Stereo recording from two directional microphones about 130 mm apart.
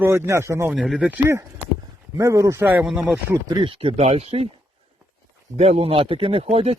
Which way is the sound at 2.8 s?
5° right (ahead or behind).